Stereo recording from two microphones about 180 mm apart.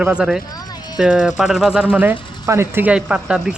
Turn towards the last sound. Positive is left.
turn(degrees=-5)  # may be behind; listen again after turning